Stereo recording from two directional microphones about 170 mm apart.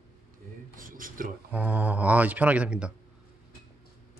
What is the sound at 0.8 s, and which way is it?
Speech, 55° right (ahead or behind).